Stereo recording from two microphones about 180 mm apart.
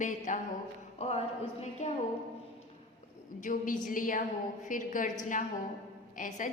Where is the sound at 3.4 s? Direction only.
45° left (ahead or behind).